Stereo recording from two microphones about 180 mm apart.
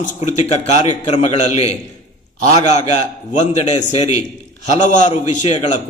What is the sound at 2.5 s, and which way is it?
A man's voice, 40° left (ahead or behind).